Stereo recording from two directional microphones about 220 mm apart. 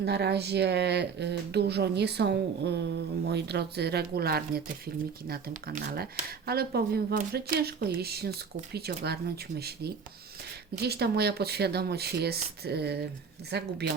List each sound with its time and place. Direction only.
0.0 s speech: 50° right (ahead or behind)